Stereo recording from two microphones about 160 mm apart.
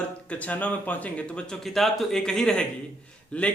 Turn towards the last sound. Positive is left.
turn(degrees=5)  # may be behind; listen again after turning